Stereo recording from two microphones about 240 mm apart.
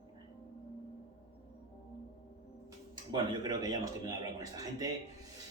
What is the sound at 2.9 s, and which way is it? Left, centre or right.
A man's voice, centre.